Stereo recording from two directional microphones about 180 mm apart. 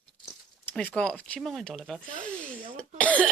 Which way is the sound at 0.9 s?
5° left (ahead or behind).